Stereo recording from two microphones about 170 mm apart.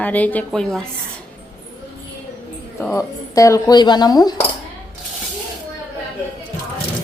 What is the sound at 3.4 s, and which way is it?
Speech, 20° left (ahead or behind).